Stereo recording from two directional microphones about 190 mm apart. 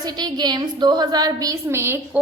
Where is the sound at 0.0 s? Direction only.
20° right (ahead or behind).